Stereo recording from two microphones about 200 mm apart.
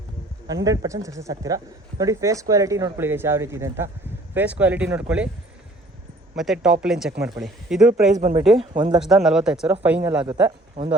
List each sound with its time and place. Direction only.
0.4 s speech: 20° right (ahead or behind)
6.3 s speech: centre (ahead or behind)
8.1 s speech: 35° right (ahead or behind)
9.0 s speech: centre (ahead or behind)